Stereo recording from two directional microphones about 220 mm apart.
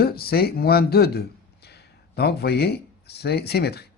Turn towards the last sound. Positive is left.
turn(degrees=45)  # may be behind; listen again after turning